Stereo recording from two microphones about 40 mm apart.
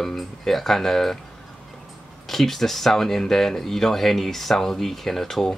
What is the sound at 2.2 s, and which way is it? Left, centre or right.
Speech, centre.